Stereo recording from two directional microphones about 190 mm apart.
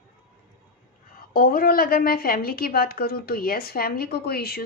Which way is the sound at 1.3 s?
50° left (ahead or behind).